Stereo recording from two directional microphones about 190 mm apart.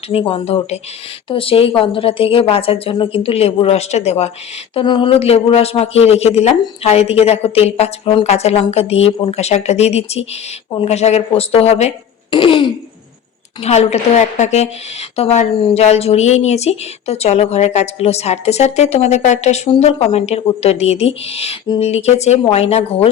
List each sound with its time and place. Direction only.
0.1 s a woman's voice: 30° left (ahead or behind)